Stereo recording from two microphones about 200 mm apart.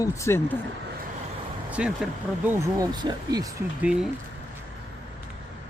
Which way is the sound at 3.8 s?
5° right (ahead or behind).